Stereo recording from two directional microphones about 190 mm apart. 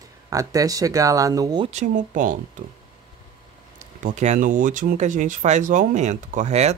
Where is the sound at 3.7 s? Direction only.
40° right (ahead or behind).